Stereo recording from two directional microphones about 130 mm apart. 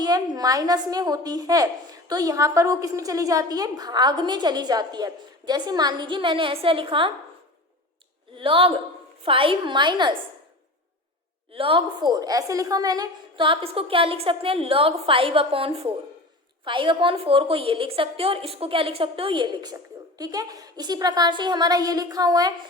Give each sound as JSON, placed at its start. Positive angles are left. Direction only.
{"t": 0.0, "sound": "a woman's voice", "side_deg": -30}
{"t": 8.4, "sound": "a woman's voice", "side_deg": -45}
{"t": 11.5, "sound": "a woman's voice", "side_deg": -45}
{"t": 12.1, "sound": "a woman's voice", "side_deg": -30}